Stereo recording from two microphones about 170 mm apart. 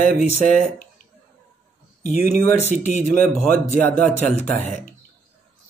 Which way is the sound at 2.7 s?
45° left (ahead or behind).